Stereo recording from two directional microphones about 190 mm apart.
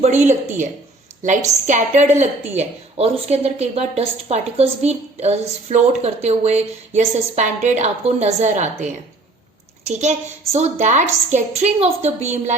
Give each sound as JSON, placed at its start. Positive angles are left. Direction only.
{"t": 0.3, "sound": "a woman's voice", "side_deg": -40}